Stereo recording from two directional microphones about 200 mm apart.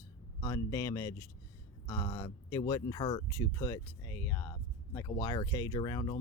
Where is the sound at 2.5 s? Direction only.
15° left (ahead or behind).